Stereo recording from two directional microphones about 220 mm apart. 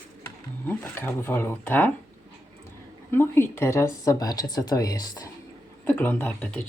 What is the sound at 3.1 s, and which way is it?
Speech, 10° left (ahead or behind).